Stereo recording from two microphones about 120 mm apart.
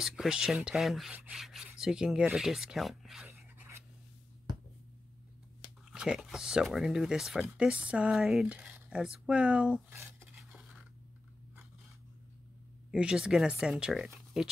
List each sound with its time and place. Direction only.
0.0 s speech: 5° right (ahead or behind)
1.1 s speech: 15° right (ahead or behind)
3.3 s a sound: 15° right (ahead or behind)
5.9 s speech: 5° right (ahead or behind)
10.3 s dishes: 5° right (ahead or behind)
12.9 s speech: 10° right (ahead or behind)